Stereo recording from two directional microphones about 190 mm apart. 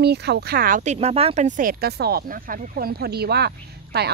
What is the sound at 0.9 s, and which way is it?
Speech, 30° right (ahead or behind).